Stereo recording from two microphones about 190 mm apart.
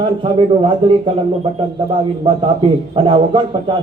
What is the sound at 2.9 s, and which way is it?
Speech, 25° right (ahead or behind).